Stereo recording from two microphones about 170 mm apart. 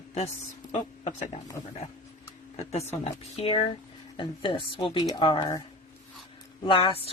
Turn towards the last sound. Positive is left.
turn(degrees=35)  # may be behind; listen again after turning